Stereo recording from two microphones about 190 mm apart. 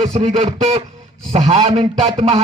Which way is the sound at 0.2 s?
30° right (ahead or behind).